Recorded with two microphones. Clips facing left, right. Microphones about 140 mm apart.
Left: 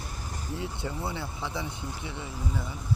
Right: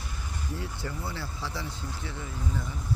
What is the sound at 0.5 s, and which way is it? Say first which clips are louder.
Speech: left 2 dB; 25° left (ahead or behind).